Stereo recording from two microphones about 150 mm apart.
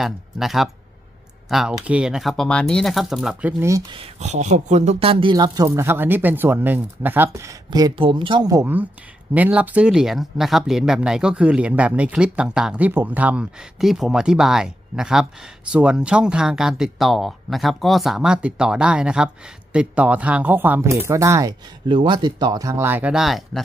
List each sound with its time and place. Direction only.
0.0 s speech: centre (ahead or behind); by 3.8 s 20° right (ahead or behind)
3.9 s speech: 40° right (ahead or behind); by 7.9 s 25° right (ahead or behind)
7.9 s speech: 35° right (ahead or behind)
9.3 s speech: 10° right (ahead or behind)